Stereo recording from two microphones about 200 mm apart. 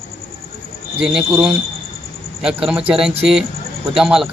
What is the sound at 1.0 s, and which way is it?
Speech, 5° right (ahead or behind).